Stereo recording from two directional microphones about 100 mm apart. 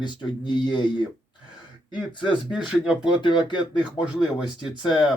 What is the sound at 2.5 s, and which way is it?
Speech, 10° right (ahead or behind).